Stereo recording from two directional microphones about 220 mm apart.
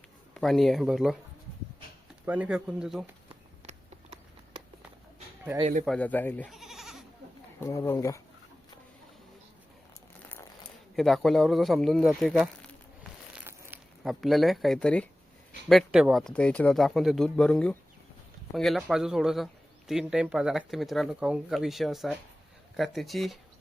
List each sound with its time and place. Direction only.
0.3 s speech: centre (ahead or behind)
2.2 s speech: 5° right (ahead or behind)
3.7 s a sound: 30° right (ahead or behind)
5.5 s speech: 30° right (ahead or behind)
5.8 s speech: 5° left (ahead or behind)
7.6 s speech: 15° left (ahead or behind)
10.2 s speech: 10° left (ahead or behind)
13.3 s a sound: 10° right (ahead or behind)
15.7 s speech: 5° right (ahead or behind)